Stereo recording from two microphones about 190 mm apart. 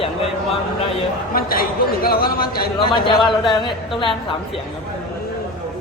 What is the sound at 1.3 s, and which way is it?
Speech, 50° left (ahead or behind).